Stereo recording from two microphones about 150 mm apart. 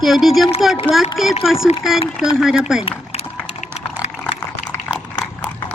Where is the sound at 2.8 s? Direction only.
40° left (ahead or behind).